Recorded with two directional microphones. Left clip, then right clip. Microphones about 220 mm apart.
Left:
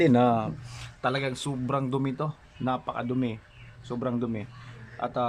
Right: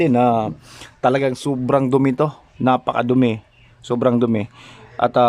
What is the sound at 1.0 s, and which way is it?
A man's voice, 30° right (ahead or behind).